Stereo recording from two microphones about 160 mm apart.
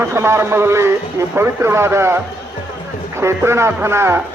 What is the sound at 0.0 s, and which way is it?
A man's voice, 15° right (ahead or behind).